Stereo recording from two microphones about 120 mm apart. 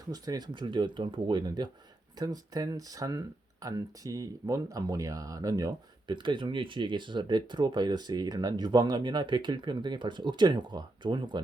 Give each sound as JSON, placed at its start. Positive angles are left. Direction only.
{"t": 0.1, "sound": "speech", "side_deg": -35}